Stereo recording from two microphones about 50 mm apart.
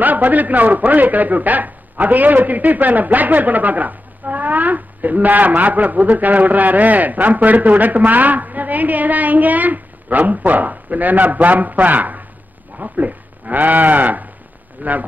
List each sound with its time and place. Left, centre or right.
0.0 s a man's voice: right